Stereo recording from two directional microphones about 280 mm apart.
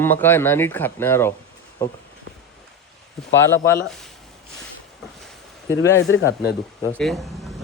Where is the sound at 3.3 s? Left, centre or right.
Centre.